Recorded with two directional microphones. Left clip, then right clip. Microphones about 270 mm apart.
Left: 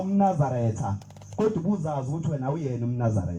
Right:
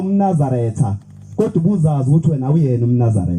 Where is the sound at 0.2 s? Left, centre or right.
Right.